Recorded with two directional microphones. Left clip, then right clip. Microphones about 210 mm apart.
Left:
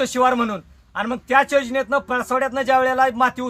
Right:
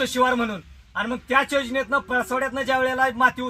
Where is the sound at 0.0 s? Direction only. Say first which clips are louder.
Left 3 dB; 20° left (ahead or behind).